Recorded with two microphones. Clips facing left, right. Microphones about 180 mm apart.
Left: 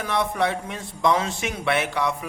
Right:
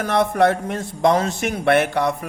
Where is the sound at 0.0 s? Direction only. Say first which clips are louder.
Right 7 dB; 50° right (ahead or behind).